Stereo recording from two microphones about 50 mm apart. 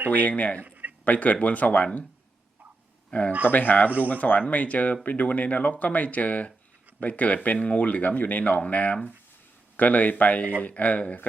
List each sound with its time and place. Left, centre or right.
0.1 s speech: left
0.6 s a sound: right
1.0 s speech: left
3.1 s speech: left